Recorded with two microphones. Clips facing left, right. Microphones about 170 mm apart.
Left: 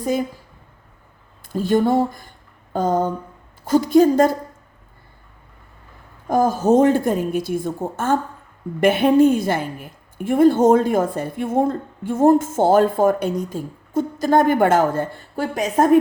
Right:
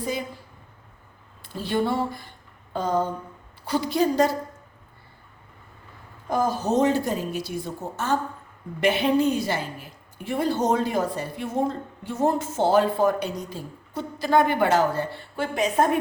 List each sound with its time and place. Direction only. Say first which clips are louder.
0.0 s a woman's voice: left 8 dB; 45° left (ahead or behind)
1.5 s a woman's voice: left 7 dB; 45° left (ahead or behind)
6.2 s a woman's voice: left 7 dB; 50° left (ahead or behind)